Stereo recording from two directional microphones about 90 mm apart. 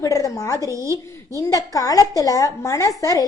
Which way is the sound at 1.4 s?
40° left (ahead or behind).